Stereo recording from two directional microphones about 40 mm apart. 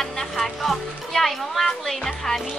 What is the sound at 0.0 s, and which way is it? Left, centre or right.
Music, centre.